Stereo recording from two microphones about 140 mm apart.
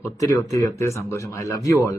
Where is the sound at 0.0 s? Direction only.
25° left (ahead or behind).